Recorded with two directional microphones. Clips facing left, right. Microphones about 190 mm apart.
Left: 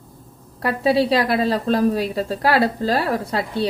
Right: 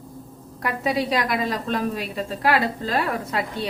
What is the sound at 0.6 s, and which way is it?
A woman's voice, 30° left (ahead or behind).